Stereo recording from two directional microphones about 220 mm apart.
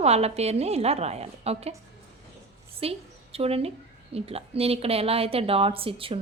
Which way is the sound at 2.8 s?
25° right (ahead or behind).